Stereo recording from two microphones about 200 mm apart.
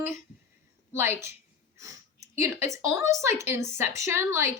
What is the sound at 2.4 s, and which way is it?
A woman's voice, 15° right (ahead or behind).